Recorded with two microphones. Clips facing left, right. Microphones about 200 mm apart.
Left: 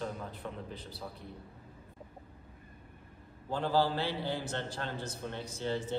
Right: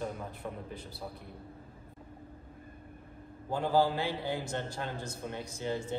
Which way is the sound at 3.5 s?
10° right (ahead or behind).